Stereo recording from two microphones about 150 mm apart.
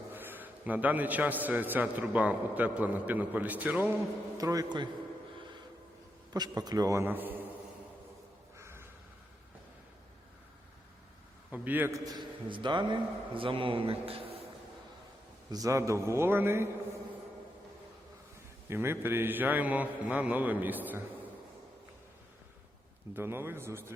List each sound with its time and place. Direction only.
0.1 s a man's voice: 15° right (ahead or behind)
4.4 s a man's voice: 25° right (ahead or behind)
6.3 s a man's voice: 25° right (ahead or behind)
8.5 s a sound: 15° right (ahead or behind)
11.5 s a man's voice: 10° right (ahead or behind); by 14.4 s 40° right (ahead or behind)
15.5 s a man's voice: 20° right (ahead or behind)
18.7 s a man's voice: 15° right (ahead or behind)
23.1 s a man's voice: 15° right (ahead or behind)